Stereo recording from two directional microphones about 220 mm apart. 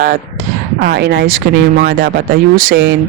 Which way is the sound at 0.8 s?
45° right (ahead or behind).